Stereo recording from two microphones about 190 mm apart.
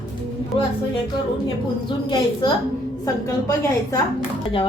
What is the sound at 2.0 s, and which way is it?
Speech, 20° left (ahead or behind).